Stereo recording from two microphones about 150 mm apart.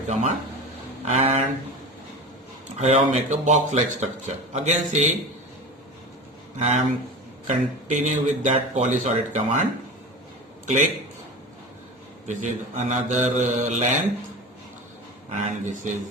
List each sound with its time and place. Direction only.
0.1 s a man's voice: 50° right (ahead or behind)
2.7 s a man's voice: 50° right (ahead or behind)
6.6 s a man's voice: 50° right (ahead or behind)
12.3 s a man's voice: 55° right (ahead or behind)
15.4 s speech: 55° right (ahead or behind)